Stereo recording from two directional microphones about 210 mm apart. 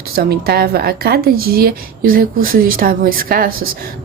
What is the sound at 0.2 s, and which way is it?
A woman's voice, 50° right (ahead or behind).